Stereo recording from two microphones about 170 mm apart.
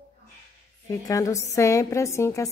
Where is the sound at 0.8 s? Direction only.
20° left (ahead or behind).